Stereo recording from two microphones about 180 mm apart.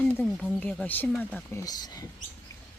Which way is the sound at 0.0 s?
10° left (ahead or behind).